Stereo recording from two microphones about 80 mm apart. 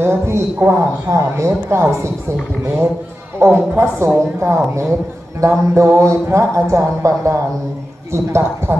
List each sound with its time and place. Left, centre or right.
0.0 s a man's voice: right
3.3 s a man's voice: right